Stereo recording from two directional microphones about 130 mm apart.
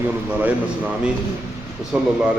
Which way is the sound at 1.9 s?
10° right (ahead or behind).